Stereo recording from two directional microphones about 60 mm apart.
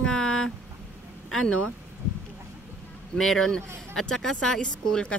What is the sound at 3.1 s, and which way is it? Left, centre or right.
A man's voice, centre.